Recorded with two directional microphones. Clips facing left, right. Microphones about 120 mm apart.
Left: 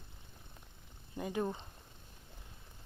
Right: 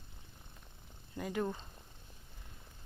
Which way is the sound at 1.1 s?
20° left (ahead or behind).